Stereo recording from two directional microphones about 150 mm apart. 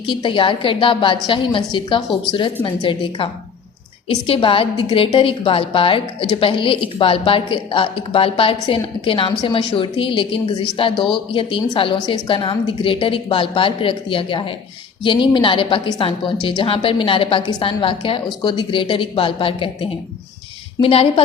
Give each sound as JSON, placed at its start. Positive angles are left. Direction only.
{"t": 0.0, "sound": "a woman's voice", "side_deg": 35}